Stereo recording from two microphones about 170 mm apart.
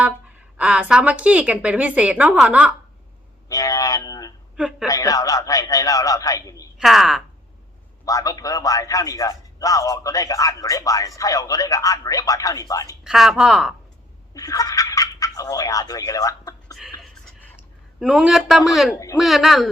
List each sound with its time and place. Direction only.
0.5 s a woman's voice: 5° right (ahead or behind)
3.5 s speech: 20° left (ahead or behind)
4.5 s a man's voice: 5° right (ahead or behind)
4.9 s a man's voice: 20° left (ahead or behind)
6.7 s a woman's voice: centre (ahead or behind)
8.0 s a man's voice: 20° left (ahead or behind)
13.1 s speech: centre (ahead or behind)
14.3 s speech: 20° left (ahead or behind)
16.7 s a sound: centre (ahead or behind)
18.0 s speech: 5° right (ahead or behind)